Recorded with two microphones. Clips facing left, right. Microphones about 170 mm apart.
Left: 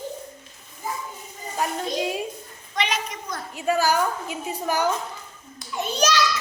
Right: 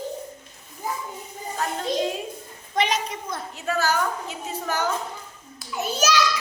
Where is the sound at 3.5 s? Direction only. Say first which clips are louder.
Left 3 dB; 15° left (ahead or behind).